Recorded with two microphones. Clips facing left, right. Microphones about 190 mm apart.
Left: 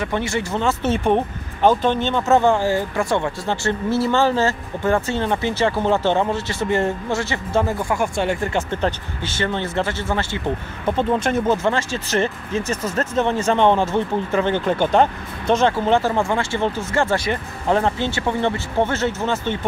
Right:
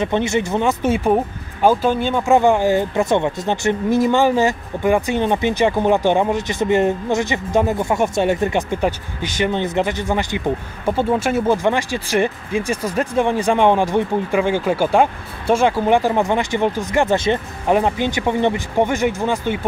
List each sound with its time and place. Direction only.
0.0 s speech: 20° right (ahead or behind)